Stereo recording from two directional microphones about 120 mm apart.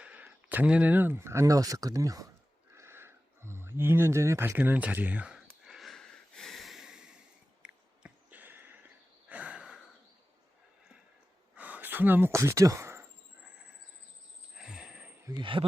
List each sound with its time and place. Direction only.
0.0 s speech: 15° right (ahead or behind); by 2.3 s 30° right (ahead or behind)
2.7 s a sound: 20° right (ahead or behind)
9.3 s snort: 10° right (ahead or behind)
11.5 s a sound: 15° right (ahead or behind)
14.5 s wheeze: 5° right (ahead or behind)
15.3 s speech: 40° right (ahead or behind)